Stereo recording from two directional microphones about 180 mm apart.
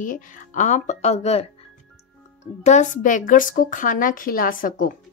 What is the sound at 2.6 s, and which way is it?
A woman's voice, 40° left (ahead or behind).